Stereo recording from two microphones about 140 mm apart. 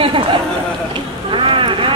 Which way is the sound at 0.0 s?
40° right (ahead or behind).